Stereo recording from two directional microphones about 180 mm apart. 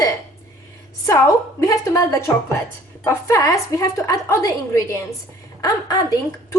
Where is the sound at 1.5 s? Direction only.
20° left (ahead or behind).